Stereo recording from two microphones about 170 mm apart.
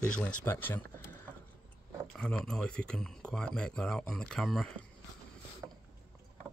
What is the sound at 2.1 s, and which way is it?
Speech, 5° left (ahead or behind).